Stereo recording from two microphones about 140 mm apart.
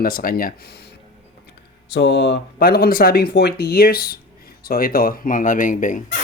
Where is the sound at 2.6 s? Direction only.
90° left; by 6.0 s 65° left (ahead or behind).